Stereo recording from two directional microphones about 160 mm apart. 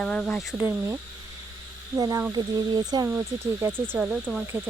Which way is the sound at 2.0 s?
25° right (ahead or behind).